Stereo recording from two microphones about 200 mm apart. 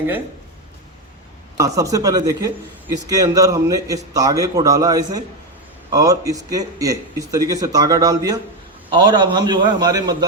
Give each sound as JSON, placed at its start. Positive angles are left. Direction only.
{"t": 1.5, "sound": "a man's voice", "side_deg": -15}